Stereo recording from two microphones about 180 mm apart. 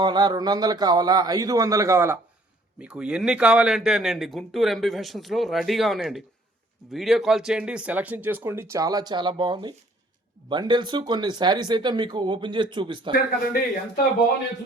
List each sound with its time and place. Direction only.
0.0 s a man's voice: 25° right (ahead or behind)
13.1 s a man's voice: 55° left (ahead or behind)